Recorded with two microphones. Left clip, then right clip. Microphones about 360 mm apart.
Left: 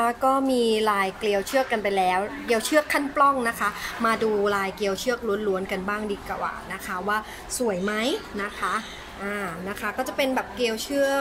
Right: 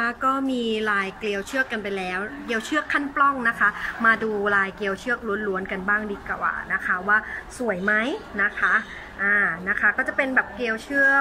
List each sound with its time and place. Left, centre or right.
0.0 s a woman's voice: centre